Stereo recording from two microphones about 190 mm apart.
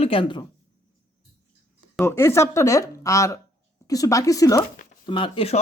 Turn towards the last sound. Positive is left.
turn(degrees=30)  # may be behind; listen again after turning